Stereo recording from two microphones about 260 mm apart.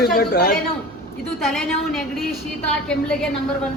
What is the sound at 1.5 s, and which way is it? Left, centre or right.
Speech, centre.